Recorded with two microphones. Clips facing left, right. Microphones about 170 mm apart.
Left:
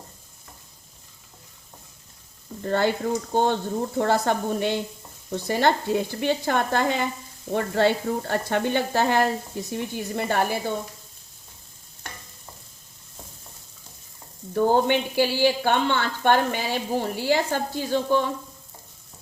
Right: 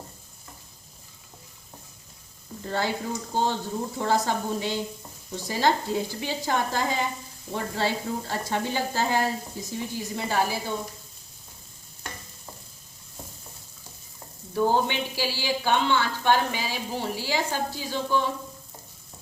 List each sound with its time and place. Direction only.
2.6 s speech: 60° left (ahead or behind)
14.5 s speech: 50° left (ahead or behind)